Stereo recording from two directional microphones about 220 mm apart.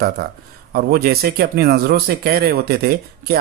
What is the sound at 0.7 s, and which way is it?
Speech, 45° right (ahead or behind).